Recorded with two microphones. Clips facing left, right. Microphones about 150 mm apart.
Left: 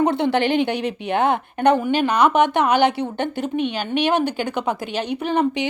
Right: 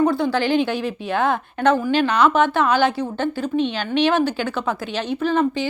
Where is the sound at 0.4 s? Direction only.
60° left (ahead or behind).